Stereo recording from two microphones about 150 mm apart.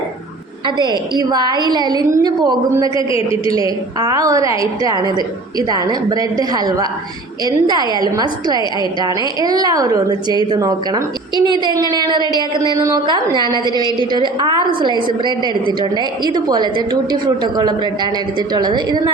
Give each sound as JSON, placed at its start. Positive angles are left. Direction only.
{"t": 0.8, "sound": "a woman's voice", "side_deg": -30}